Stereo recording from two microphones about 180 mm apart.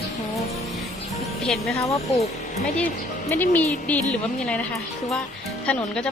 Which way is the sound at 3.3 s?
10° left (ahead or behind).